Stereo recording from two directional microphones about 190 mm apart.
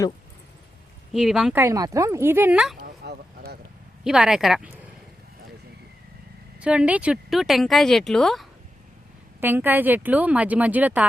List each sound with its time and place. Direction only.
1.1 s speech: 5° right (ahead or behind)
1.6 s speech: 15° right (ahead or behind)
3.0 s a sound: 60° right (ahead or behind)
4.0 s speech: 5° right (ahead or behind)
6.6 s speech: 5° right (ahead or behind)
9.4 s speech: 10° right (ahead or behind)